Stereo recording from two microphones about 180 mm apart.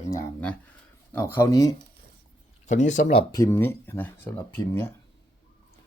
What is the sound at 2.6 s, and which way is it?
Speech, 40° left (ahead or behind).